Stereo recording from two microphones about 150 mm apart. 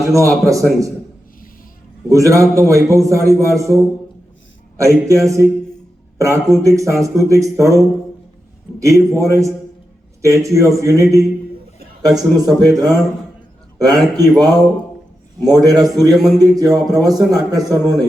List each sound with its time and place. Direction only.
0.1 s speech: 20° right (ahead or behind)
2.0 s speech: 20° right (ahead or behind)
16.7 s speech: centre (ahead or behind)
17.0 s speech: 25° right (ahead or behind)